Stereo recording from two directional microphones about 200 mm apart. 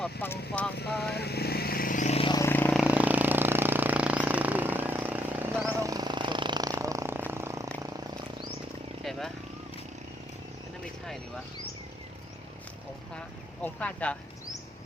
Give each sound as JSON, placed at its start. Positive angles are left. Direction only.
{"t": 0.0, "sound": "speech", "side_deg": 10}
{"t": 1.1, "sound": "vehicle", "side_deg": 55}
{"t": 2.4, "sound": "vehicle", "side_deg": 10}
{"t": 2.8, "sound": "a sound", "side_deg": -5}
{"t": 9.0, "sound": "vehicle", "side_deg": 0}
{"t": 13.1, "sound": "a sound", "side_deg": 5}